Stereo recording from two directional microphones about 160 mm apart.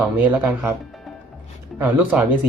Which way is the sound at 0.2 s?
10° right (ahead or behind).